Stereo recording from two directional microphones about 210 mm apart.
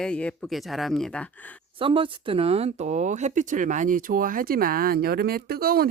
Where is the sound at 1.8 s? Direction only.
25° right (ahead or behind).